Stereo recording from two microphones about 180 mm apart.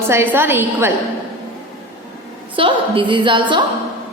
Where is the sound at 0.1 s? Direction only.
15° right (ahead or behind).